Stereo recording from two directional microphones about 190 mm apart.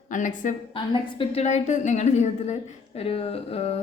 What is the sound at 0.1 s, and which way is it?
A woman's voice, 40° left (ahead or behind).